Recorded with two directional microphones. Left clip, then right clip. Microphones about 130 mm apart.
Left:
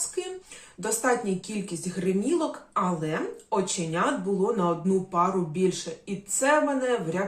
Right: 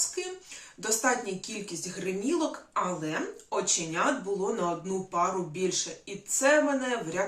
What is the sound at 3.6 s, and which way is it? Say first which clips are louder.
Speech: left 1 dB; 25° right (ahead or behind).